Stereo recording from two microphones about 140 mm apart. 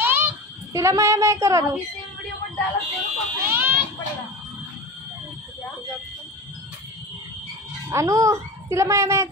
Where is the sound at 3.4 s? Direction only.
15° right (ahead or behind).